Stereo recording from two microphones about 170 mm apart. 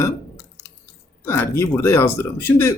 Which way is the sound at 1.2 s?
15° left (ahead or behind).